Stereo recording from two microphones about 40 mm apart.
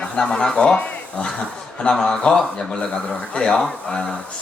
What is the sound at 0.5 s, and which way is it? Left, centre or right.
Speech, left.